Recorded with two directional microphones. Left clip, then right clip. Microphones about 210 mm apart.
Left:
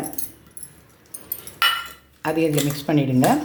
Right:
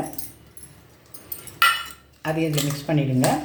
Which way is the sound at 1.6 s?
15° right (ahead or behind).